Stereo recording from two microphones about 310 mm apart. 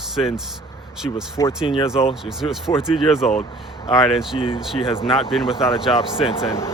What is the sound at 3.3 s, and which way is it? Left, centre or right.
Speech, centre.